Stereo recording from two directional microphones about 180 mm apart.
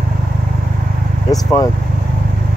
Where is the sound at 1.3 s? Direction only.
20° left (ahead or behind).